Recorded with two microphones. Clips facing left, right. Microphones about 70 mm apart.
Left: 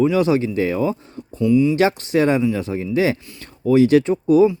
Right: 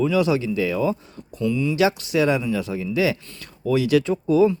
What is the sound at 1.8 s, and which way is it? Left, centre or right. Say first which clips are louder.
Speech: left 3 dB; left.